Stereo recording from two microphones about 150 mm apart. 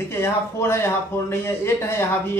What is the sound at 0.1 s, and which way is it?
A man's voice, 15° left (ahead or behind).